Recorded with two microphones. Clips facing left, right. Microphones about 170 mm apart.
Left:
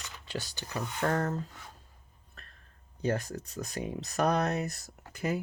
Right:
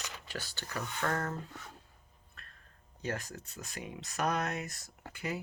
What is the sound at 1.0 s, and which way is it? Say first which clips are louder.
Speech: left 5 dB; 35° left (ahead or behind).